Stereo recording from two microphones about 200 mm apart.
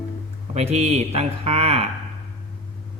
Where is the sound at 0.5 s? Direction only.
30° right (ahead or behind).